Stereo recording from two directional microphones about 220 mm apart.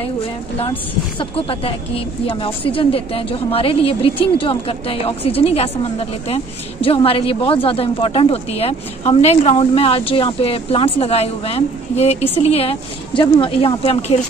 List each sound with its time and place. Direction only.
1.3 s a woman's voice: 25° left (ahead or behind)